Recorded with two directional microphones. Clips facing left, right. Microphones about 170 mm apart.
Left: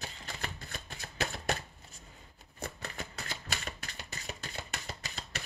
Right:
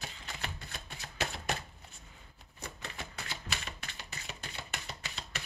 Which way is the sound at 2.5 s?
55° left (ahead or behind).